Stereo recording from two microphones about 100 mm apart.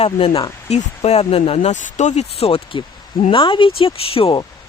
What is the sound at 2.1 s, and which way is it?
Speech, 90° left.